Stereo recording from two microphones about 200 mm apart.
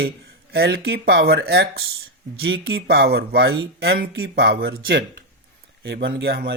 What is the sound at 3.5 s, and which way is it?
Speech, 80° right.